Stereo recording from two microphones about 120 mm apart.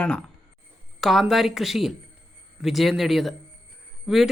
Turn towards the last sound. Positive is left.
turn(degrees=-5)  # may be behind; listen again after turning